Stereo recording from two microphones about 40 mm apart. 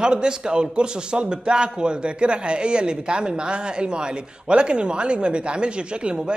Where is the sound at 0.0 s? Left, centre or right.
Right.